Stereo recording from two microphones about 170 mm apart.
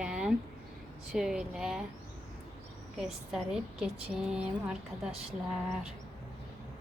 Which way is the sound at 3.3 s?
5° right (ahead or behind).